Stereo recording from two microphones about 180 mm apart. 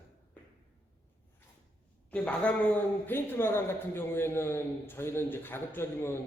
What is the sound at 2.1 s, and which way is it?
Speech, 10° left (ahead or behind).